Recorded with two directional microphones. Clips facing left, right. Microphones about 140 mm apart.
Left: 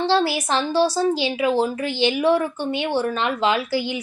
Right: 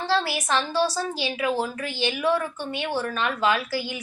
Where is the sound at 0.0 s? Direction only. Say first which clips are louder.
Left 5 dB; 30° left (ahead or behind).